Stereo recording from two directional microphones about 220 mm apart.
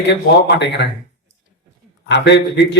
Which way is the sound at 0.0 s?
50° left (ahead or behind).